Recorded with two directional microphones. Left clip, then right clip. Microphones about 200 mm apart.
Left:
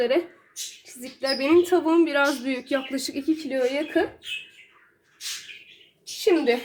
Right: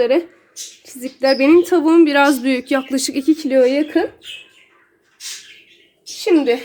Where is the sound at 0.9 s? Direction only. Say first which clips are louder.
Right 12 dB; 50° right (ahead or behind).